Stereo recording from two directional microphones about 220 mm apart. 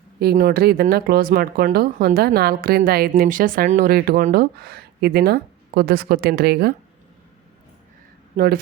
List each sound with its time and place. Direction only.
0.2 s speech: 45° right (ahead or behind)
8.4 s speech: 45° right (ahead or behind)